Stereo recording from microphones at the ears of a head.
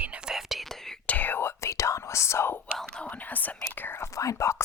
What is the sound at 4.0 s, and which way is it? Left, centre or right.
Speech, left.